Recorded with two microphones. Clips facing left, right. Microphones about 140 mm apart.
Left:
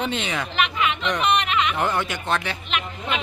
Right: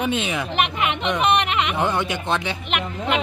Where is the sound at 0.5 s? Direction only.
55° right (ahead or behind).